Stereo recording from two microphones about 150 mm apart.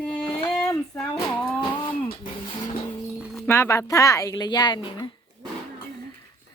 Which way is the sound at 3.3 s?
15° left (ahead or behind).